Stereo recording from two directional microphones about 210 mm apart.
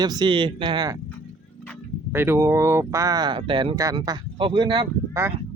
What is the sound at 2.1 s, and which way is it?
Speech, 10° right (ahead or behind).